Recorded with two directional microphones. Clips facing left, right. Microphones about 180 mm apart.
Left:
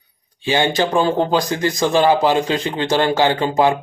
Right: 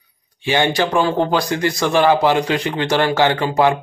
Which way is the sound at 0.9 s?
20° left (ahead or behind).